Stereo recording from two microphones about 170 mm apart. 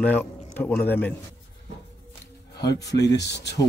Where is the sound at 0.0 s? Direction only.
10° left (ahead or behind).